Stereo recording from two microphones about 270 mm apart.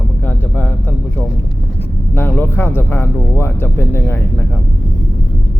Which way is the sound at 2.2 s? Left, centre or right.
Centre.